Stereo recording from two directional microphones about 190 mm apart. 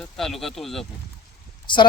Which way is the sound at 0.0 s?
Centre (ahead or behind).